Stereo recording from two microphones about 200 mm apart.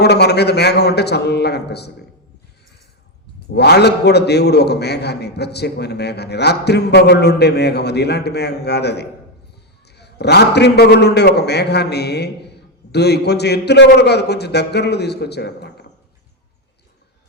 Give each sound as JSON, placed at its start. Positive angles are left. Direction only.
{"t": 0.0, "sound": "a man's voice", "side_deg": 55}
{"t": 3.5, "sound": "a man's voice", "side_deg": 55}